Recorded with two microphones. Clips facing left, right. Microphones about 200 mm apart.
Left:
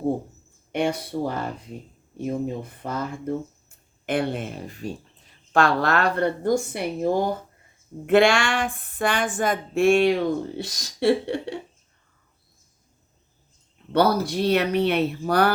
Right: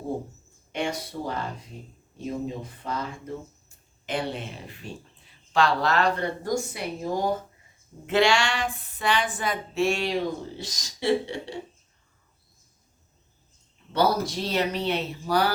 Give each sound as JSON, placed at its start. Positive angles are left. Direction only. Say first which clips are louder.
{"t": 0.7, "sound": "speech", "louder": "left 5 dB", "side_deg": 55}
{"t": 13.9, "sound": "speech", "louder": "left 3 dB", "side_deg": 60}